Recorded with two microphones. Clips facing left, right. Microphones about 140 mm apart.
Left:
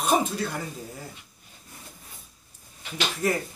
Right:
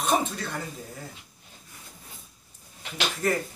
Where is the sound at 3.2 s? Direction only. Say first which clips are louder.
Even; 10° left (ahead or behind).